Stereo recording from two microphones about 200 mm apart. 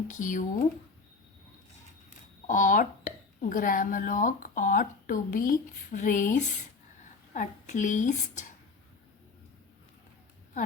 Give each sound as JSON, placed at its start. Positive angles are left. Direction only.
{"t": 0.1, "sound": "speech", "side_deg": 40}
{"t": 2.5, "sound": "speech", "side_deg": 40}